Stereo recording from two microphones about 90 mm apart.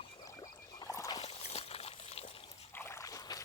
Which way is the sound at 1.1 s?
90° left.